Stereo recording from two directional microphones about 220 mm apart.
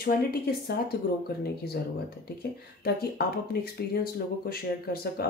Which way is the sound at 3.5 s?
45° left (ahead or behind).